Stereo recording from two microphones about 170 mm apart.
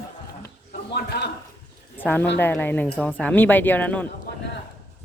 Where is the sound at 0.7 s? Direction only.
75° left (ahead or behind).